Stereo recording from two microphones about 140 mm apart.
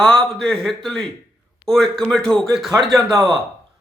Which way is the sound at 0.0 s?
5° left (ahead or behind).